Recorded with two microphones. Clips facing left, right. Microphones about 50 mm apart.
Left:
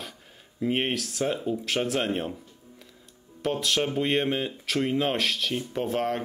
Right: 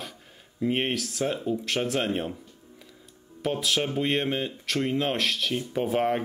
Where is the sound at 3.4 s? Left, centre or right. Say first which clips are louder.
Even; centre.